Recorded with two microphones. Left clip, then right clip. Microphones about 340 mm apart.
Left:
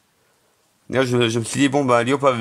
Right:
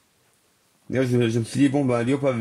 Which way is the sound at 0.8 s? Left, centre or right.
Left.